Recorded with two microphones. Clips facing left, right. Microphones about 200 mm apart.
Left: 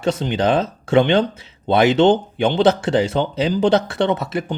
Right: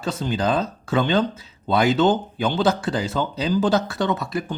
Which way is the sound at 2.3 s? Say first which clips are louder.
Left 5 dB; 20° left (ahead or behind).